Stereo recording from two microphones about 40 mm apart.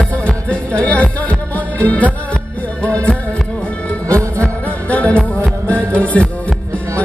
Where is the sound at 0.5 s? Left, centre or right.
Left.